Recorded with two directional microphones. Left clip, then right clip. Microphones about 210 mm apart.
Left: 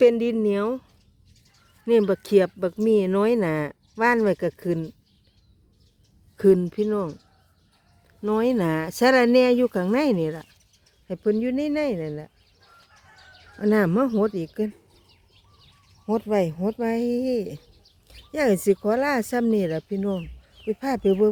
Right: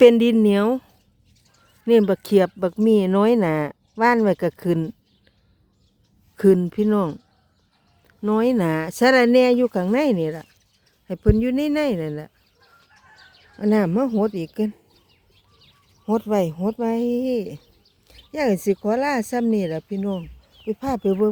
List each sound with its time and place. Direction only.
0.0 s speech: 25° right (ahead or behind)
6.3 s speech: 15° right (ahead or behind)
11.1 s speech: 20° right (ahead or behind)
13.6 s speech: 5° right (ahead or behind)
16.0 s speech: 15° right (ahead or behind)